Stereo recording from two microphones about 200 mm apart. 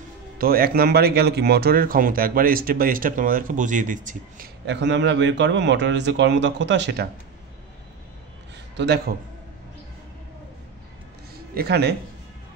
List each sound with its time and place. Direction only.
0.4 s speech: 50° right (ahead or behind)
4.6 s a man's voice: 60° right (ahead or behind)
8.7 s a man's voice: 55° right (ahead or behind)
11.5 s speech: 55° right (ahead or behind)